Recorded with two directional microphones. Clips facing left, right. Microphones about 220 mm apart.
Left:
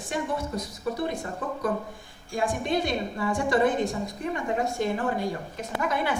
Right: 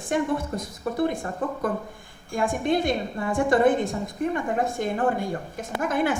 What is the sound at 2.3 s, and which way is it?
A woman's voice, 50° right (ahead or behind).